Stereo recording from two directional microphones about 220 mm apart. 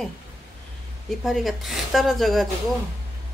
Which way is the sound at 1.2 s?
Centre (ahead or behind).